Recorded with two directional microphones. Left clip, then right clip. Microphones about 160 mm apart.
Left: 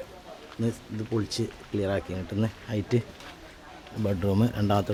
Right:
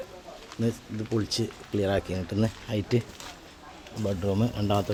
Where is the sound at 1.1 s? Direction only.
10° right (ahead or behind).